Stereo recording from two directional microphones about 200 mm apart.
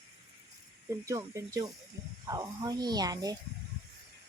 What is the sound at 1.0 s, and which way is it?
Speech, 15° right (ahead or behind).